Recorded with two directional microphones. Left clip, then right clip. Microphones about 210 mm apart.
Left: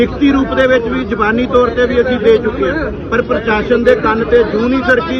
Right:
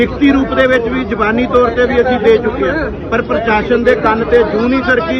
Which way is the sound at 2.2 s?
25° right (ahead or behind).